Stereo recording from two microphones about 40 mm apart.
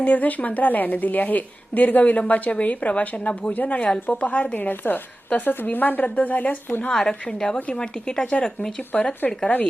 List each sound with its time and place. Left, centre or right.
0.0 s a woman's voice: left
4.5 s speech: left
6.9 s a woman's voice: centre
9.5 s speech: left